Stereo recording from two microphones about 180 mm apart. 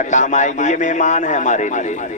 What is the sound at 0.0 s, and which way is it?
A man's voice, 40° left (ahead or behind).